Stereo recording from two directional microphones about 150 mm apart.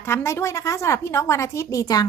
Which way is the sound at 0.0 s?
15° left (ahead or behind).